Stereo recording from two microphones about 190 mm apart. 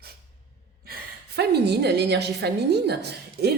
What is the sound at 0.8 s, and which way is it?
A woman's voice, 55° right (ahead or behind).